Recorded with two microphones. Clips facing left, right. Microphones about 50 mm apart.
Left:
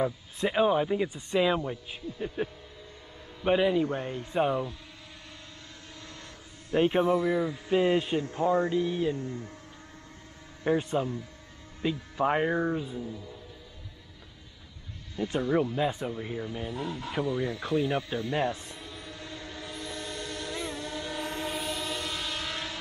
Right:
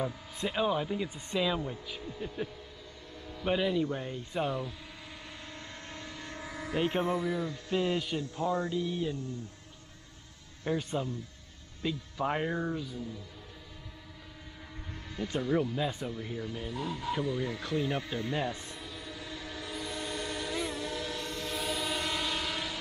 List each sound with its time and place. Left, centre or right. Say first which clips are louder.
0.0 s speech: left 5 dB; centre
6.0 s vehicle: right 3 dB; right
6.8 s speech: left 6 dB; left
7.2 s speech: left 6 dB; centre; by 9.4 s left
10.6 s speech: left 5 dB; left
15.1 s speech: left 3 dB; centre
17.6 s speech: left 4 dB; centre
18.7 s train: even; centre
20.4 s train: right 1 dB; centre
21.2 s train: left 4 dB; left
21.5 s train: even; centre
21.9 s train: right 1 dB; centre
22.4 s train: even; centre